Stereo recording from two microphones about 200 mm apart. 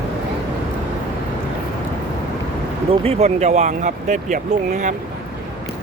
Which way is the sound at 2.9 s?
30° right (ahead or behind).